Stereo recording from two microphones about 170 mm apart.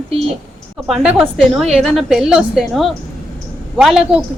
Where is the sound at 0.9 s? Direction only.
5° right (ahead or behind).